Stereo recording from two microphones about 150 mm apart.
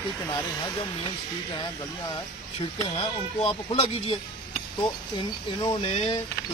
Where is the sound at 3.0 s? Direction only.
35° left (ahead or behind).